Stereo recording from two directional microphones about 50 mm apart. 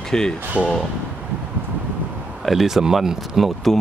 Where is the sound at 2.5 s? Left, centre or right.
Centre.